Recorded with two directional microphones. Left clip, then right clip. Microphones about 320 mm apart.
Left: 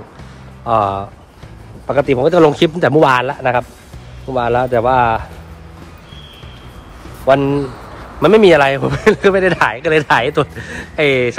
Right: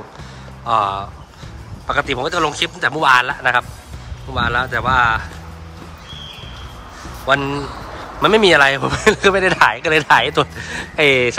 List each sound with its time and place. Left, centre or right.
0.7 s a man's voice: centre
7.2 s speech: centre